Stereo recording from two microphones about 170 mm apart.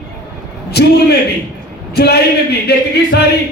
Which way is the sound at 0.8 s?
70° left (ahead or behind).